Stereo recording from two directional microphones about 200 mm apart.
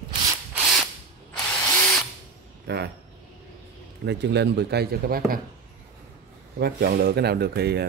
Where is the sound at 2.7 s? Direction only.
55° right (ahead or behind).